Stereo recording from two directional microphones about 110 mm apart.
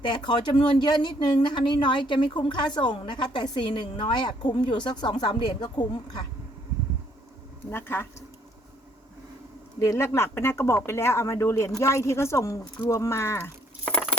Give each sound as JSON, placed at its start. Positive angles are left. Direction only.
{"t": 0.0, "sound": "speech", "side_deg": 45}
{"t": 7.7, "sound": "speech", "side_deg": 20}
{"t": 9.8, "sound": "speech", "side_deg": 25}